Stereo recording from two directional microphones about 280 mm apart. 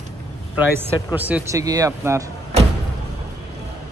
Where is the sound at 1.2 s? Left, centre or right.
Centre.